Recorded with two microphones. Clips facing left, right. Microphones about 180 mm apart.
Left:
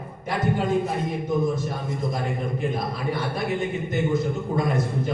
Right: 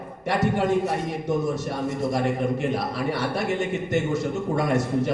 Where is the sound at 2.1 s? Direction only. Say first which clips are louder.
Right 5 dB; 80° right.